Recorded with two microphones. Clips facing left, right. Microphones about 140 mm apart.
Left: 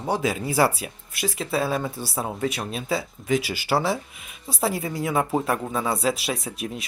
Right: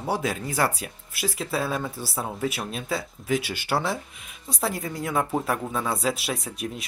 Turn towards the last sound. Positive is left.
turn(degrees=0)  # may be behind; listen again after turning